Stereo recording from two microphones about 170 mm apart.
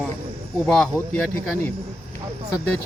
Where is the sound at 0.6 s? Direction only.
5° left (ahead or behind).